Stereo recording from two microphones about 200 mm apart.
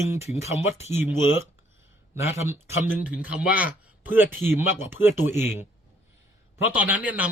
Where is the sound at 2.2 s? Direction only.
10° right (ahead or behind).